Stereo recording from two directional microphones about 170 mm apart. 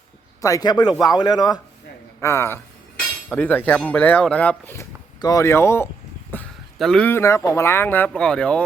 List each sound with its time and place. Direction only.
0.4 s a man's voice: 20° left (ahead or behind)
6.3 s a sound: 10° left (ahead or behind)
6.7 s speech: centre (ahead or behind)